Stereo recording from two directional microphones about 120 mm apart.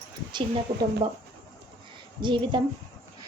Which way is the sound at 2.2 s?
40° right (ahead or behind).